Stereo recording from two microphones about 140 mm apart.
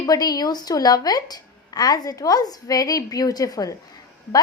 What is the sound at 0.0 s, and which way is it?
A woman's voice, 30° left (ahead or behind).